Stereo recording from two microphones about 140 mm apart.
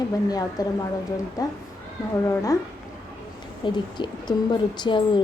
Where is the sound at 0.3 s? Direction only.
25° left (ahead or behind).